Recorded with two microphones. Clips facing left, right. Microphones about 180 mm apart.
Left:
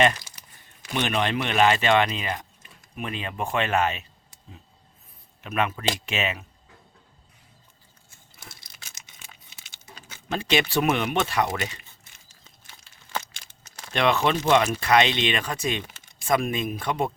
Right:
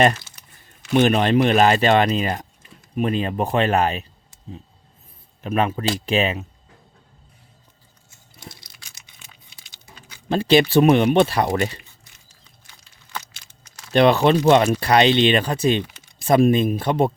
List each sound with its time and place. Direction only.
0.9 s speech: 40° right (ahead or behind)
5.4 s speech: 35° right (ahead or behind)
8.4 s tearing: 25° left (ahead or behind)
9.0 s a sound: 45° left (ahead or behind)
10.2 s speech: 30° right (ahead or behind)
13.9 s speech: 35° right (ahead or behind)